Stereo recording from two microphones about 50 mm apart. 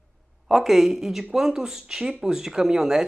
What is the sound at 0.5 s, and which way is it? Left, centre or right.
Speech, centre.